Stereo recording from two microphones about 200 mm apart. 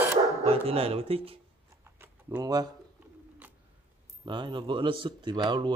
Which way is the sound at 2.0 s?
10° right (ahead or behind).